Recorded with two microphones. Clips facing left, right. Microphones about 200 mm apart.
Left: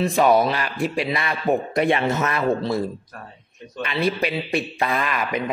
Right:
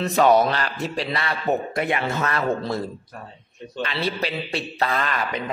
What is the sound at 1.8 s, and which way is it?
A man's voice, 25° left (ahead or behind).